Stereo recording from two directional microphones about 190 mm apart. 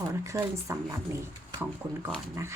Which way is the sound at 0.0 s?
15° right (ahead or behind).